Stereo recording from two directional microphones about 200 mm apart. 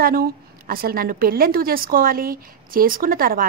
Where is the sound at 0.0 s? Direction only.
50° right (ahead or behind).